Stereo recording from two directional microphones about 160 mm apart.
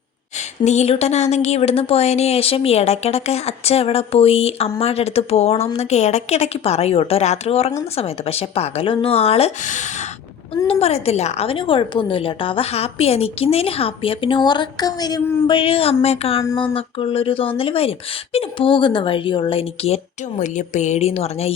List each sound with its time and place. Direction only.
0.3 s a woman's voice: 45° left (ahead or behind)
20.4 s a woman's voice: 50° left (ahead or behind)